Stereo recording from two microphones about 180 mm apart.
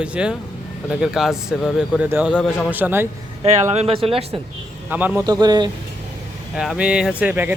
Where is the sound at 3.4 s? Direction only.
35° right (ahead or behind).